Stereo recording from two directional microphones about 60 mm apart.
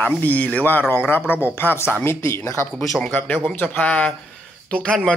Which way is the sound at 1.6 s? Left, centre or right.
Left.